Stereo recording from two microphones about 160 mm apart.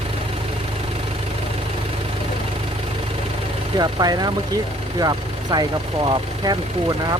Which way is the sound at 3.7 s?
25° right (ahead or behind).